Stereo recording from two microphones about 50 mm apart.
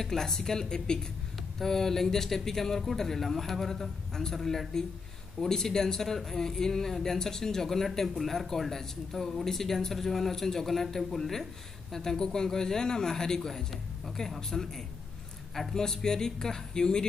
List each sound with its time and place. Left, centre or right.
0.0 s speech: centre